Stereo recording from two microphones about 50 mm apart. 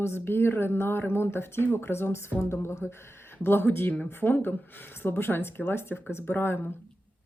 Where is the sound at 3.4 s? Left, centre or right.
Left.